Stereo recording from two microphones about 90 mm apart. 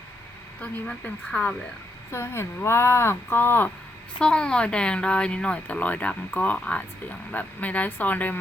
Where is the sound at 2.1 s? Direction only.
30° left (ahead or behind).